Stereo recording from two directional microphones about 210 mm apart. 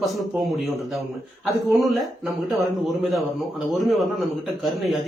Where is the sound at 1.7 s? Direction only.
Centre (ahead or behind).